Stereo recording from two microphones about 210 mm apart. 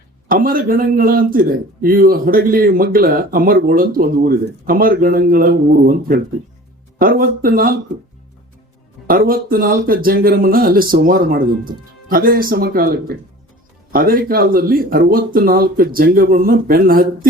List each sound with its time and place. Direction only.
0.3 s speech: 40° right (ahead or behind)
7.0 s speech: 45° right (ahead or behind)
9.0 s speech: 40° right (ahead or behind)